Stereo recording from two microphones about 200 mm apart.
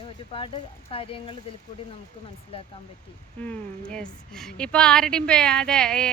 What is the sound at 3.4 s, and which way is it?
A woman's voice, 5° left (ahead or behind).